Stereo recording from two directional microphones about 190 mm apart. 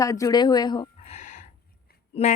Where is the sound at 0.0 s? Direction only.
15° left (ahead or behind).